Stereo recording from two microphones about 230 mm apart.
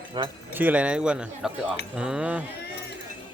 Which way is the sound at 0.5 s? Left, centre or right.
Centre.